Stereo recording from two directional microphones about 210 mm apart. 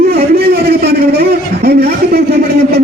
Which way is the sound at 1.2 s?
50° right (ahead or behind).